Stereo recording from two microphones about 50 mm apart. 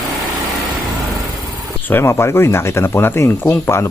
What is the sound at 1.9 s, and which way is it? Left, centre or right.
Speech, left.